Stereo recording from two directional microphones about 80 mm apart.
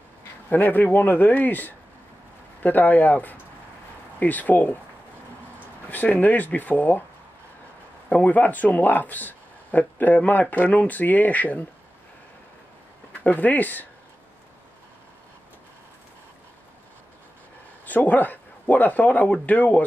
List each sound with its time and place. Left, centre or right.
0.2 s speech: left
5.9 s speech: left
8.1 s speech: centre
13.2 s speech: left
17.8 s speech: centre